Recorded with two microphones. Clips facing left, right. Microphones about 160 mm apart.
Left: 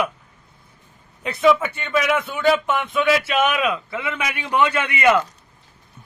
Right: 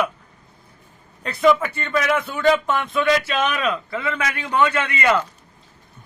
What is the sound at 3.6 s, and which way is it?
A man's voice, 15° left (ahead or behind).